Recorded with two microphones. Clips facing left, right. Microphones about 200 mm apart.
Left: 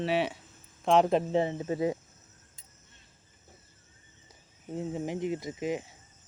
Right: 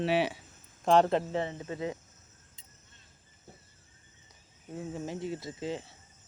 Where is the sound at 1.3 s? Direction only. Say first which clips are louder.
Left 6 dB; 25° left (ahead or behind).